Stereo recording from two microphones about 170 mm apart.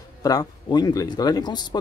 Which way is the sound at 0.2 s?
20° left (ahead or behind).